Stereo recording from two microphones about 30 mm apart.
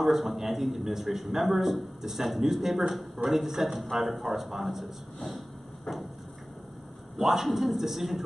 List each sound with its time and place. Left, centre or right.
0.0 s a man's voice: centre
5.9 s a sound: centre
7.2 s a man's voice: centre